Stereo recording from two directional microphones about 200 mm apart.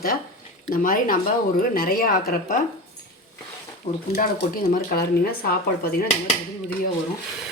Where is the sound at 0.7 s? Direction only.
45° left (ahead or behind).